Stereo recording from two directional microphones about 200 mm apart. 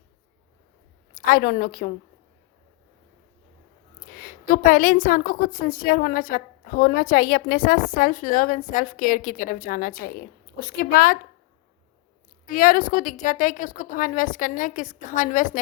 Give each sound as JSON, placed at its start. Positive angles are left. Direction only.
{"t": 1.1, "sound": "a woman's voice", "side_deg": 45}
{"t": 4.2, "sound": "a woman's voice", "side_deg": 45}
{"t": 12.5, "sound": "a woman's voice", "side_deg": 45}